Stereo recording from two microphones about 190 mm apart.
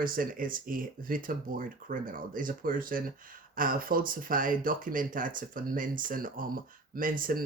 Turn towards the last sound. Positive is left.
turn(degrees=-45)  # may be behind; listen again after turning